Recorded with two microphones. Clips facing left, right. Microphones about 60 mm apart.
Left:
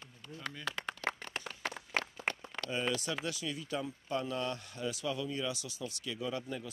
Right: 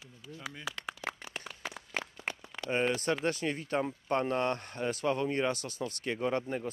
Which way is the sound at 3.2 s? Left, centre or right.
Right.